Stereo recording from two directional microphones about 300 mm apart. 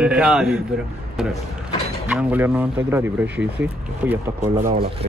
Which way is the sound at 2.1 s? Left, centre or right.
Centre.